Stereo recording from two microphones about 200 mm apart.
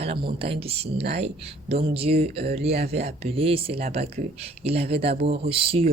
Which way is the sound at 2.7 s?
50° right (ahead or behind).